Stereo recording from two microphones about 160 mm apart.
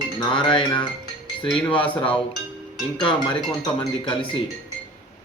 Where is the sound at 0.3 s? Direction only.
30° left (ahead or behind).